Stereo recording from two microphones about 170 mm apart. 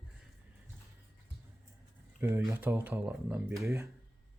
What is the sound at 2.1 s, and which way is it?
Speech, 15° right (ahead or behind).